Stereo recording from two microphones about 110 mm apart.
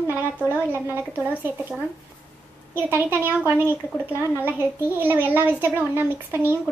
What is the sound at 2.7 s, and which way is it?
A child's voice, 20° right (ahead or behind).